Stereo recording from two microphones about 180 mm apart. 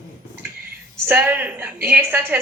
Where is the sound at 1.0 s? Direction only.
10° right (ahead or behind).